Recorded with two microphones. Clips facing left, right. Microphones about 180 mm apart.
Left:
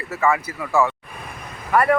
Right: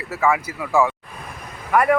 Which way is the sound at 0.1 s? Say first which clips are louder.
Even; 5° right (ahead or behind).